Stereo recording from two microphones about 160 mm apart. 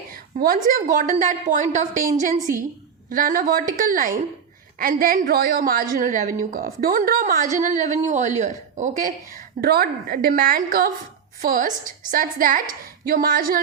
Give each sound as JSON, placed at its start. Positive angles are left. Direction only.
{"t": 0.1, "sound": "a woman's voice", "side_deg": -65}